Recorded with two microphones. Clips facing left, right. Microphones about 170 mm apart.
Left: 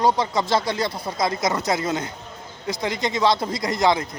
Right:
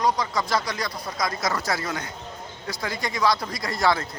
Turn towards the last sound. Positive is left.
turn(degrees=20)  # may be behind; listen again after turning